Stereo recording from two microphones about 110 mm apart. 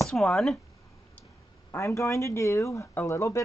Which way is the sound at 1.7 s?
25° left (ahead or behind).